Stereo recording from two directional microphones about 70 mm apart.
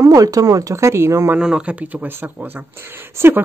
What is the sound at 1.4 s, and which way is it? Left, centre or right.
Speech, centre.